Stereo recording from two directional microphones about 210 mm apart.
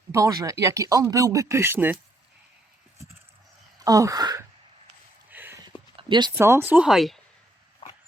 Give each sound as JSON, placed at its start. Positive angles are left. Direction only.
{"t": 0.1, "sound": "speech", "side_deg": -15}
{"t": 3.8, "sound": "speech", "side_deg": -15}
{"t": 5.3, "sound": "a sound", "side_deg": -10}
{"t": 5.6, "sound": "speech", "side_deg": -20}
{"t": 7.8, "sound": "dog", "side_deg": 25}